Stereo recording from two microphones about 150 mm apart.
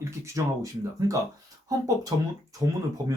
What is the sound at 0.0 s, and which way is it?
Speech, 20° right (ahead or behind).